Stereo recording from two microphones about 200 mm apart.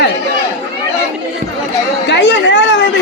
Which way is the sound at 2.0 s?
60° left (ahead or behind).